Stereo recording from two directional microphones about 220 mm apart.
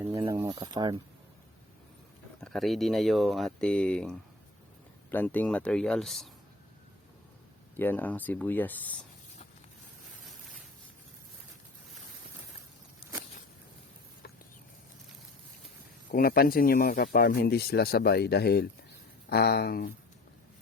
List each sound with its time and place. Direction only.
0.0 s speech: 15° right (ahead or behind)
2.4 s speech: centre (ahead or behind)
7.8 s speech: 10° left (ahead or behind)
16.1 s speech: 40° left (ahead or behind)